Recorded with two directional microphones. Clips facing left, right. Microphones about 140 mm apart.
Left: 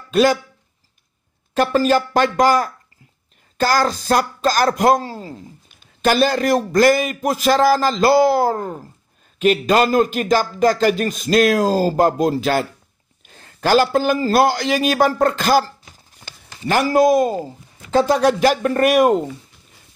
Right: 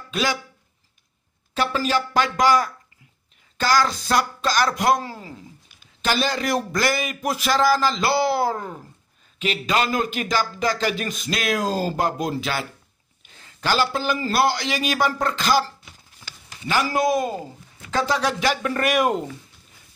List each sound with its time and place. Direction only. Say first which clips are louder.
0.1 s speech: left 10 dB; 45° left (ahead or behind)
1.5 s a man's voice: left 7 dB; 45° left (ahead or behind)
6.0 s a man's voice: left 7 dB; 45° left (ahead or behind)